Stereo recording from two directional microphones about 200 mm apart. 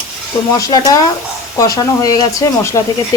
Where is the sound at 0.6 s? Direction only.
20° left (ahead or behind).